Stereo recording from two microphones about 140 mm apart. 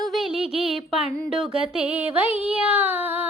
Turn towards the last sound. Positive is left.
turn(degrees=-15)  # may be behind; listen again after turning